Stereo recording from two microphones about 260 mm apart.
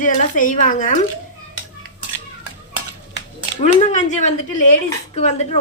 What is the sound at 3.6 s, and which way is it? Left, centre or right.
Speech, left.